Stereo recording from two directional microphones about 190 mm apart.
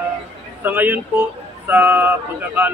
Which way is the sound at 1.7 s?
10° right (ahead or behind).